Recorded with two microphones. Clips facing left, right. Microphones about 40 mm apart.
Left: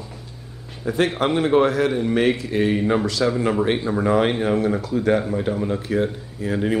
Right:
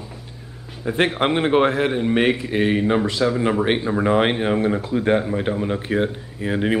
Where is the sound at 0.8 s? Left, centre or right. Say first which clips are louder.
Right 1 dB; right.